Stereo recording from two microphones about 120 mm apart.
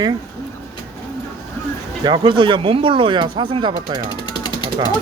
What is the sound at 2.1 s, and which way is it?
Speech, 40° right (ahead or behind).